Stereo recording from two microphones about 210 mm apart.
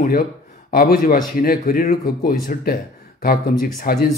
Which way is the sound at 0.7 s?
45° left (ahead or behind).